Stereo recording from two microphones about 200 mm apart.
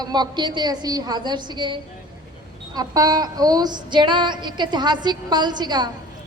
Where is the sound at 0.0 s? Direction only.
20° right (ahead or behind).